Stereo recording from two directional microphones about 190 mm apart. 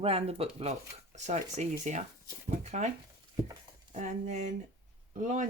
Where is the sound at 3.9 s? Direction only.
40° right (ahead or behind).